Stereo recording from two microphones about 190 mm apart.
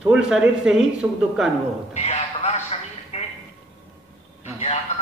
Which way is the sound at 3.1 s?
35° left (ahead or behind).